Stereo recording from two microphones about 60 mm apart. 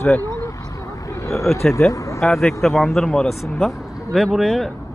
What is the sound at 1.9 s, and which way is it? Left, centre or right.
Vehicle, left.